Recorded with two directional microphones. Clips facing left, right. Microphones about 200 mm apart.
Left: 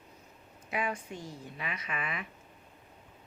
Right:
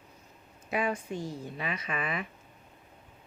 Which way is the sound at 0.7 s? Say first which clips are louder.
Right 4 dB; 30° right (ahead or behind).